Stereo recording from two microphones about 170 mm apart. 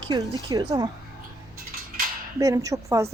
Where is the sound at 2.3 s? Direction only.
20° right (ahead or behind).